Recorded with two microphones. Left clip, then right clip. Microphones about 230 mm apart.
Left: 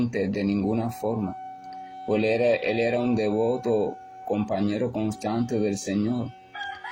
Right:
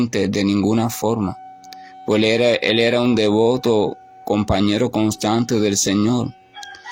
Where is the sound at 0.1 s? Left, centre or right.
Right.